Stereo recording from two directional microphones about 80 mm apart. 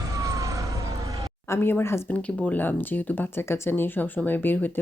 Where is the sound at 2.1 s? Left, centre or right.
Centre.